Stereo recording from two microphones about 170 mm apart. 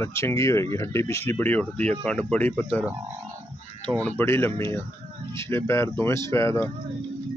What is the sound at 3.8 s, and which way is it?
Speech, 10° left (ahead or behind).